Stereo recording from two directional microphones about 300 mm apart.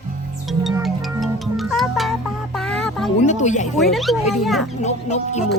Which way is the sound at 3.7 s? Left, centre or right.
Centre.